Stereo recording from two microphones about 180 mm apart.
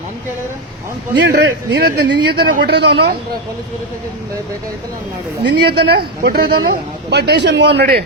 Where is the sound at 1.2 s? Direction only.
65° right (ahead or behind).